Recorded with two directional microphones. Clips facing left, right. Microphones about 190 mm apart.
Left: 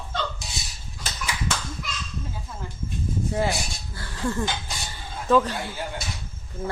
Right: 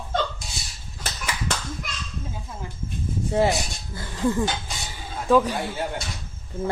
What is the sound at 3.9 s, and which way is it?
Dog, 20° right (ahead or behind).